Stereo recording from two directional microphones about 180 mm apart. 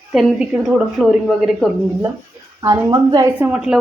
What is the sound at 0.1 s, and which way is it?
A woman's voice, 5° right (ahead or behind).